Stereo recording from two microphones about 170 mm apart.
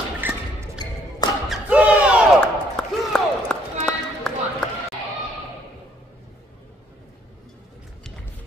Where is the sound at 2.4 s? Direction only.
5° left (ahead or behind).